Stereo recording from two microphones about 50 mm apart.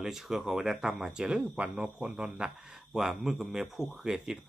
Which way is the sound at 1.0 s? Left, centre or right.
Centre.